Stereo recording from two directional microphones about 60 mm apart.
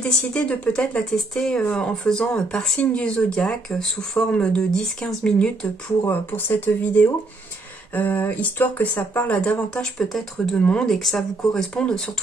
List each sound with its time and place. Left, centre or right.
0.0 s speech: centre
6.0 s speech: left
9.4 s speech: centre
9.9 s speech: centre
10.5 s speech: centre
10.9 s speech: centre
11.7 s speech: centre